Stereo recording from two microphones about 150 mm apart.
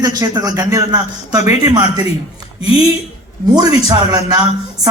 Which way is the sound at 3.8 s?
25° right (ahead or behind).